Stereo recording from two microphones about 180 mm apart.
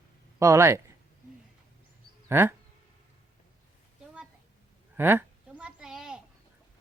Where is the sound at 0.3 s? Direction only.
15° right (ahead or behind).